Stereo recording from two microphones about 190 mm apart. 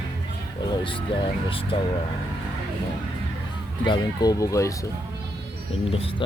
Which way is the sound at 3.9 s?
20° left (ahead or behind).